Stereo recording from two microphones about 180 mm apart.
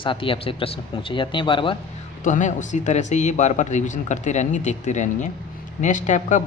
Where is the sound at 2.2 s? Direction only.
45° left (ahead or behind).